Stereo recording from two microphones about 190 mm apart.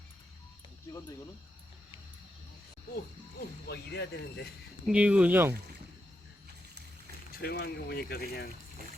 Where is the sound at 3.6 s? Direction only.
60° left (ahead or behind).